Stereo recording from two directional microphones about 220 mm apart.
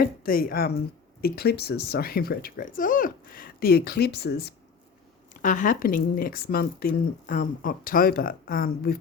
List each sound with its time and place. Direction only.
0.0 s speech: 40° left (ahead or behind)
5.4 s speech: 35° left (ahead or behind)